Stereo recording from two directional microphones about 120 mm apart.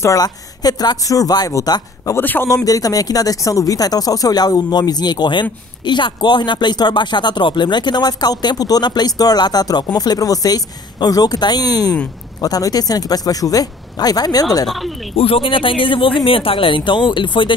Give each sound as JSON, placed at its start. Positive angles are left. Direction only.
{"t": 0.0, "sound": "speech", "side_deg": 30}
{"t": 2.2, "sound": "speech", "side_deg": 15}
{"t": 2.5, "sound": "speech", "side_deg": 30}
{"t": 14.7, "sound": "speech", "side_deg": 0}
{"t": 15.1, "sound": "speech", "side_deg": 50}